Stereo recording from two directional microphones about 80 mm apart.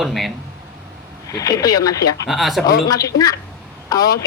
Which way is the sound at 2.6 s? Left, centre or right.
Left.